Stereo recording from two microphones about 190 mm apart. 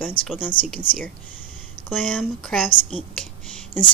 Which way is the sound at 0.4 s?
10° left (ahead or behind).